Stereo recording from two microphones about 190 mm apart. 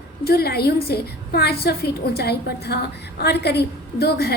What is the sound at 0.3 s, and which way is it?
A woman's voice, 55° left (ahead or behind).